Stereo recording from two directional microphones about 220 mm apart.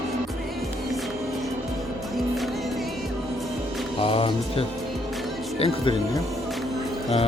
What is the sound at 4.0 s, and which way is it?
Music, 25° left (ahead or behind).